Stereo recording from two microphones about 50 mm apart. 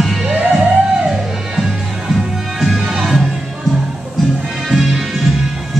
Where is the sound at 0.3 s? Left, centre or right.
Right.